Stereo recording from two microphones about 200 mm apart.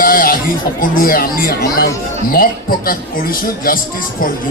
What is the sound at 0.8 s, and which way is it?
A man's voice, 45° left (ahead or behind).